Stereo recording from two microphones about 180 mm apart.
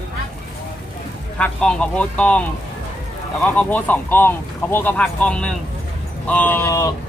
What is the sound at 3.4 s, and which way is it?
Speech, 10° left (ahead or behind).